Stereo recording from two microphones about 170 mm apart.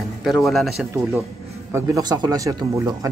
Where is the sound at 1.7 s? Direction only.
20° right (ahead or behind).